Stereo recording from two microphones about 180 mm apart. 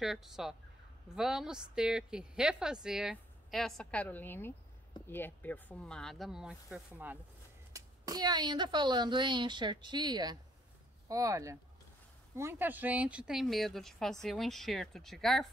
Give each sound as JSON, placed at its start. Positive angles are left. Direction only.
{"t": 0.0, "sound": "a woman's voice", "side_deg": 0}
{"t": 7.7, "sound": "a woman's voice", "side_deg": -20}